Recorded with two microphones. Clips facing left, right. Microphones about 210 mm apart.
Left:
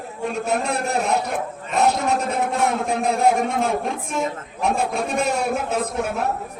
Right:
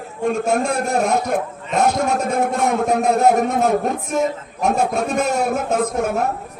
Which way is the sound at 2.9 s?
45° right (ahead or behind).